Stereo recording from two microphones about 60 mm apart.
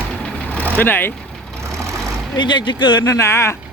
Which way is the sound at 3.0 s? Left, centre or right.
Left.